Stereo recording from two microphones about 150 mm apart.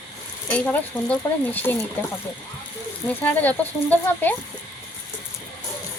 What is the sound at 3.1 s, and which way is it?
Speech, 10° left (ahead or behind).